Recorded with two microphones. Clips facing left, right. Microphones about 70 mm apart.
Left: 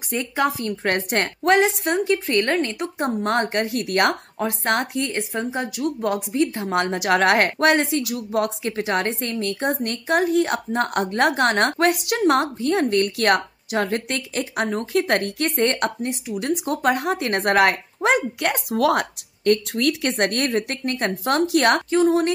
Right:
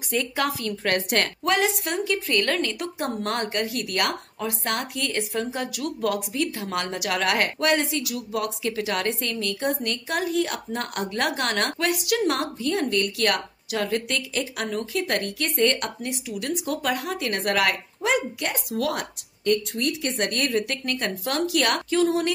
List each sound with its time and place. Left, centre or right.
0.1 s a woman's voice: left
1.4 s a woman's voice: left
4.9 s a woman's voice: left